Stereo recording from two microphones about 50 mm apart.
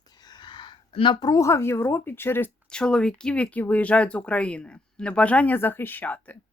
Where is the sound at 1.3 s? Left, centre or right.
Left.